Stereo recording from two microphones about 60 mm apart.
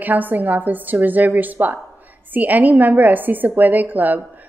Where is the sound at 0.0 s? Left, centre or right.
Right.